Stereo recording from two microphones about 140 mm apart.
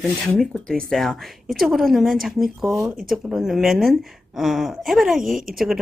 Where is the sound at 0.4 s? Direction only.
5° left (ahead or behind).